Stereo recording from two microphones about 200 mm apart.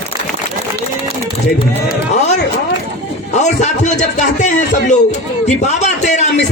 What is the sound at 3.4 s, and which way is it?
A man's voice, 35° left (ahead or behind).